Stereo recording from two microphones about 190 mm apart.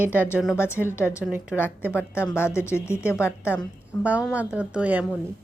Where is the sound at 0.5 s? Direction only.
15° left (ahead or behind).